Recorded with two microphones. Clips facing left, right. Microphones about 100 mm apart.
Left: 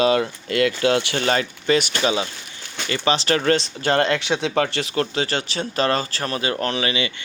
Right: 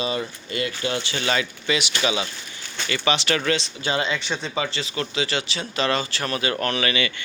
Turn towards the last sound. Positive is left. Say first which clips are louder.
# left 1 dB
turn(degrees=25)  # may be behind; listen again after turning